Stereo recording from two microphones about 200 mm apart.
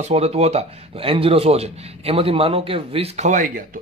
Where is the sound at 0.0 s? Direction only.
30° right (ahead or behind).